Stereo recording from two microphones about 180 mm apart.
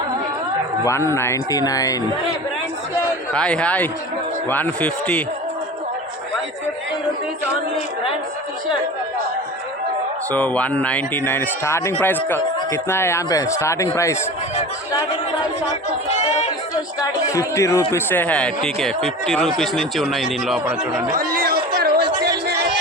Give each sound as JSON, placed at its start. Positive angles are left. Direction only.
{"t": 0.9, "sound": "speech", "side_deg": 15}
{"t": 3.3, "sound": "speech", "side_deg": 5}
{"t": 10.3, "sound": "speech", "side_deg": 10}
{"t": 17.3, "sound": "speech", "side_deg": 15}
{"t": 21.1, "sound": "chatter", "side_deg": -55}